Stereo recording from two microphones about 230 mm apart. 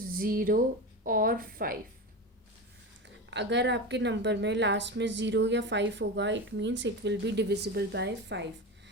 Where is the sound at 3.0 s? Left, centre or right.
Right.